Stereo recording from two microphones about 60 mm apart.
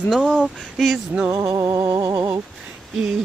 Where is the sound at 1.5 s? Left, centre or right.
Right.